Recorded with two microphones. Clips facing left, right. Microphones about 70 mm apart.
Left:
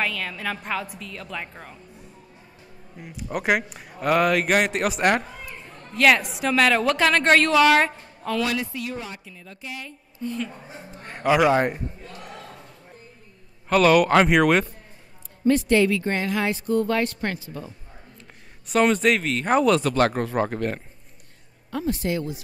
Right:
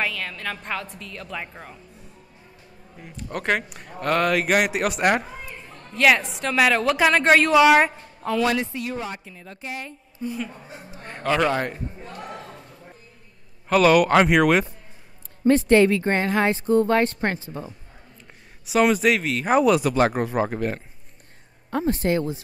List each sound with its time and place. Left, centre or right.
0.0 s speech: centre
3.0 s speech: centre
8.5 s speech: right
10.2 s a woman's voice: centre
11.1 s a man's voice: centre
12.0 s a sound: right
13.7 s speech: centre
15.4 s speech: right
18.2 s speech: centre
21.6 s speech: right